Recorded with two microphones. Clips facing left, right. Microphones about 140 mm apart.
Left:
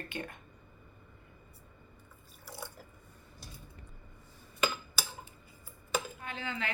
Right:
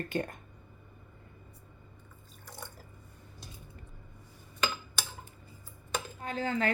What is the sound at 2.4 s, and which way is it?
Drip, 10° left (ahead or behind).